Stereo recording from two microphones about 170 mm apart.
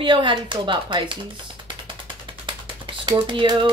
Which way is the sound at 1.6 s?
30° right (ahead or behind).